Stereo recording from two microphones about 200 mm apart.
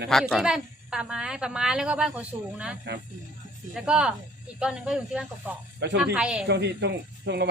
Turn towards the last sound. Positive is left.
turn(degrees=-60)  # may be behind; listen again after turning